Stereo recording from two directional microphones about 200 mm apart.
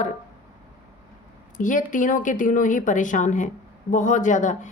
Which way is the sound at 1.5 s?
40° left (ahead or behind).